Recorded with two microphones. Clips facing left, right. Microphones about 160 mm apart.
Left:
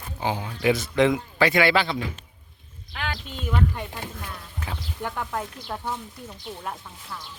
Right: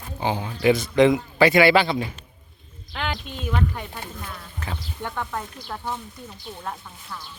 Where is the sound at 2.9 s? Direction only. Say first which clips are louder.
Right 3 dB; 20° right (ahead or behind).